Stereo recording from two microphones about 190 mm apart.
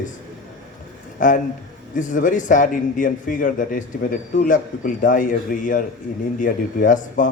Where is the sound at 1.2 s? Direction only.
45° left (ahead or behind).